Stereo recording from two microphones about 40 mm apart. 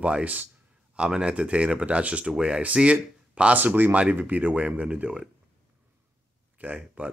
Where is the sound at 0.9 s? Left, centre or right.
Right.